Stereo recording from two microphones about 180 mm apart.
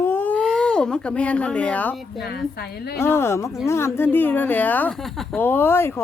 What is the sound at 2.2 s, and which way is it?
Speech, 60° left (ahead or behind).